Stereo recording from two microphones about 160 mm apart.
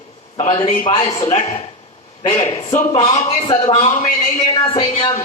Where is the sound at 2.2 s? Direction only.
30° left (ahead or behind).